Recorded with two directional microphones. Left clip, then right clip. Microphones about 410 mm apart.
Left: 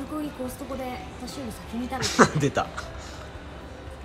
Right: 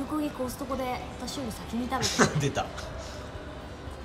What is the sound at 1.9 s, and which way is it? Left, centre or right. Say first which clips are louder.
Speech: left 5 dB; centre.